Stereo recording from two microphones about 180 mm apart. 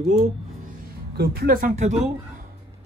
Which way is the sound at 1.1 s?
60° right (ahead or behind).